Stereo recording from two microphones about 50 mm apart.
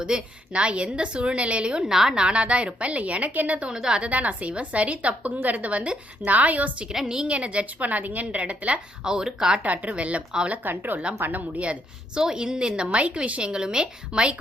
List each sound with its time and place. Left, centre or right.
0.0 s a woman's voice: centre
3.7 s speech: centre
4.0 s a woman's voice: right
6.9 s speech: centre
7.3 s a woman's voice: right
9.0 s speech: centre
9.6 s a woman's voice: right
10.6 s a woman's voice: right
12.2 s a woman's voice: centre